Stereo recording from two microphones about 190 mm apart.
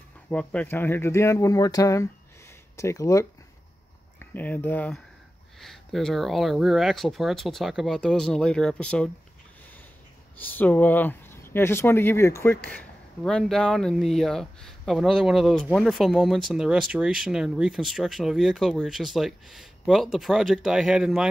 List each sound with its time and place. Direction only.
0.3 s speech: 5° left (ahead or behind)
10.4 s speech: 10° left (ahead or behind)